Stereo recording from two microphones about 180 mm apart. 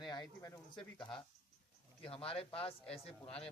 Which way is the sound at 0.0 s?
25° left (ahead or behind).